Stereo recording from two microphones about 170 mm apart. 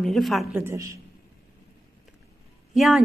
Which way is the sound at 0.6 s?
15° right (ahead or behind).